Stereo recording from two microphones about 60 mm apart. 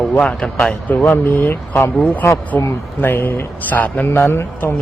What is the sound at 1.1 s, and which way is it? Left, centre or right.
Speech, left.